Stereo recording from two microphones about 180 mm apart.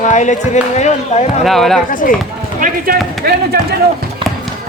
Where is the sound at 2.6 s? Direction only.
50° right (ahead or behind).